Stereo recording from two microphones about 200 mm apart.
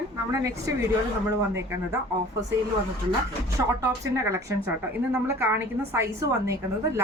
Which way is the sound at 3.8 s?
15° right (ahead or behind).